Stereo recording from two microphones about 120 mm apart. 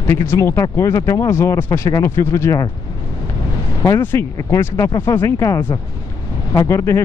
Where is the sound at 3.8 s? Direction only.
20° left (ahead or behind).